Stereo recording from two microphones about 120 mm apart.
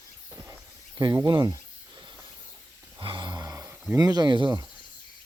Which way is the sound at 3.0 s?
40° right (ahead or behind).